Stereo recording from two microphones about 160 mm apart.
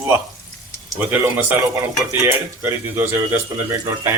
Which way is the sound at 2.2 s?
15° right (ahead or behind).